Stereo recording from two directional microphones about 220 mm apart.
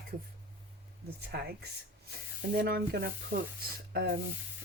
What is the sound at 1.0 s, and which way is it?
Speech, 45° right (ahead or behind).